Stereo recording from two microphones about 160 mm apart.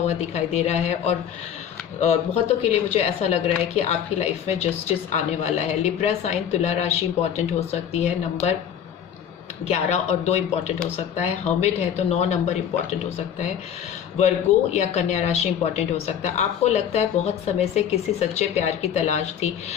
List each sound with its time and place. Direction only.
0.3 s speech: 45° left (ahead or behind)
9.6 s speech: 45° left (ahead or behind)
14.2 s speech: 45° left (ahead or behind)